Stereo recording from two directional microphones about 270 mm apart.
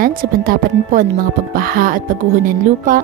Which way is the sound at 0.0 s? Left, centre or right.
Right.